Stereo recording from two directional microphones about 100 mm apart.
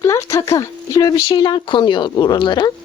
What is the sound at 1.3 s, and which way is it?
Speech, 55° left (ahead or behind).